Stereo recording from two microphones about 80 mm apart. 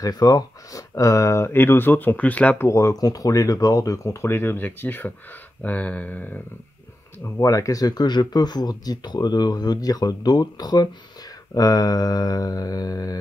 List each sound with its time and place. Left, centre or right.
0.0 s speech: left; by 2.5 s centre
2.6 s speech: left
7.3 s speech: left